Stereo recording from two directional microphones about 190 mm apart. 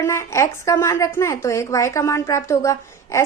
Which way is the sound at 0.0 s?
15° left (ahead or behind).